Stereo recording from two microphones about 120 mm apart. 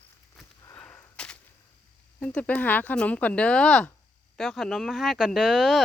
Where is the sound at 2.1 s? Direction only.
10° left (ahead or behind).